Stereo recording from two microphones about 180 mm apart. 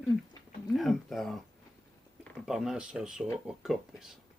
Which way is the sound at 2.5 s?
5° right (ahead or behind).